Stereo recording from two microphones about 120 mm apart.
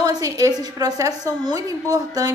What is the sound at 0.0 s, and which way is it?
A woman's voice, 30° right (ahead or behind).